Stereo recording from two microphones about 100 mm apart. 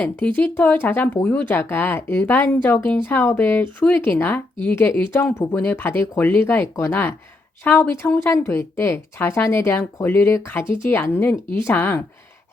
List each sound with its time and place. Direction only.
0.0 s speech: 15° left (ahead or behind)